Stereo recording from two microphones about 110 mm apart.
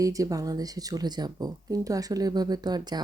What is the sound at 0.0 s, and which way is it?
Speech, 30° right (ahead or behind).